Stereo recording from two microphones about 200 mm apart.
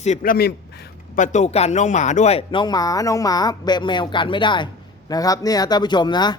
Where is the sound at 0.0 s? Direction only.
40° left (ahead or behind).